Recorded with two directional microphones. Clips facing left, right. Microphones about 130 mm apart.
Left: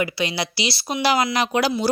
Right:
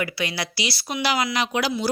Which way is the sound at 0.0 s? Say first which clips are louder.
Left 3 dB; 25° left (ahead or behind).